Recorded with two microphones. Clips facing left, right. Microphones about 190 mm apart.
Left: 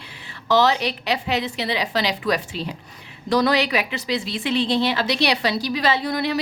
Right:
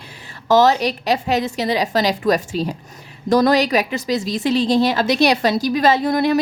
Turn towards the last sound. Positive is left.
turn(degrees=-50)  # may be behind; listen again after turning